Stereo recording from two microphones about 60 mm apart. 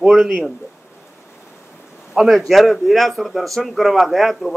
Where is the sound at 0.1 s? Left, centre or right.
Centre.